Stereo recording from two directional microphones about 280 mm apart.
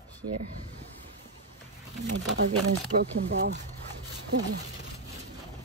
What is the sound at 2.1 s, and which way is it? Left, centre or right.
Speech, right.